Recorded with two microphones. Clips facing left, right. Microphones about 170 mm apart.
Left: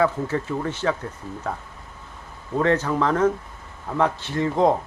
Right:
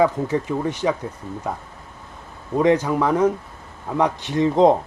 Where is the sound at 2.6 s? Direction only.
15° right (ahead or behind).